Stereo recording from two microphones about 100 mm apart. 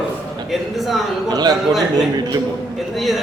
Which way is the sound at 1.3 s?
40° right (ahead or behind).